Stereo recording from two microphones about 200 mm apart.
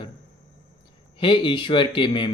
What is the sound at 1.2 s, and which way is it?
Speech, 25° left (ahead or behind).